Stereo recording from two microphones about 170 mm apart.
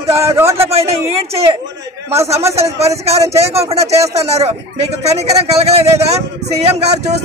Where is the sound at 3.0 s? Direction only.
35° right (ahead or behind).